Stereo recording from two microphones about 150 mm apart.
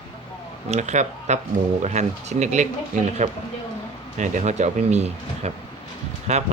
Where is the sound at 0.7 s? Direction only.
50° right (ahead or behind).